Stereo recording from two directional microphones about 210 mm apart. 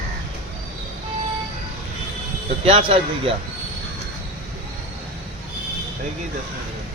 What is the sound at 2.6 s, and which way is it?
Speech, 25° right (ahead or behind).